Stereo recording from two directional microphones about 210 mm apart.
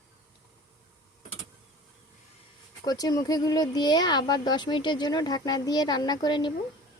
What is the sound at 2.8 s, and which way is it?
Speech, 20° left (ahead or behind).